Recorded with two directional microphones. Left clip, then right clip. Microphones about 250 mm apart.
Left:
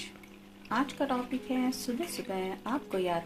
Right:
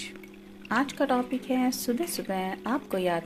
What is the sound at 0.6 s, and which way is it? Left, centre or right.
Speech, right.